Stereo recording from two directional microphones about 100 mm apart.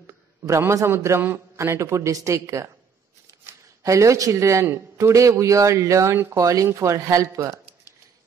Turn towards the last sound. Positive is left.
turn(degrees=-35)  # may be behind; listen again after turning